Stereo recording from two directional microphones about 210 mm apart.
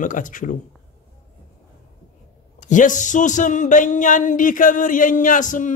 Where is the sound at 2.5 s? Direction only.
35° left (ahead or behind).